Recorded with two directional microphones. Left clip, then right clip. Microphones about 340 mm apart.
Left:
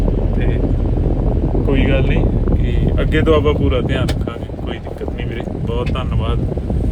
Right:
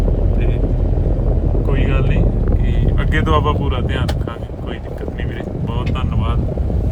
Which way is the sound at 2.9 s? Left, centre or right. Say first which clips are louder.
Left 3 dB; centre.